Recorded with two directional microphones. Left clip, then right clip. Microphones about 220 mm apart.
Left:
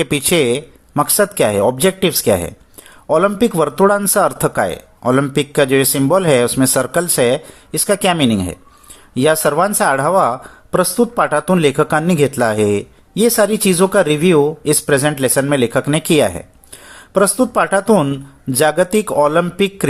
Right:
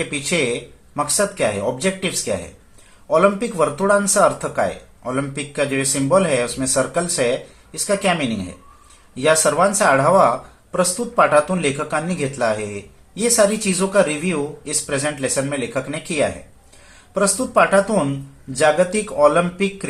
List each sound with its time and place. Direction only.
0.0 s speech: 50° left (ahead or behind)